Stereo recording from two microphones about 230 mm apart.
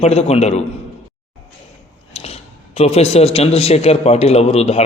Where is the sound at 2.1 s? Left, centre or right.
Left.